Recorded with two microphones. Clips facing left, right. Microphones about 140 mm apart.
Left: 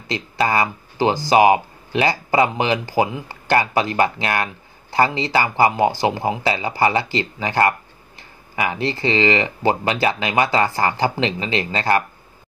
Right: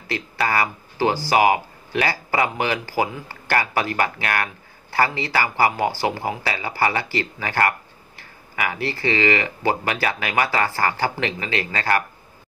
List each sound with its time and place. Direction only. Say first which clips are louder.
0.1 s speech: left 3 dB; 20° left (ahead or behind)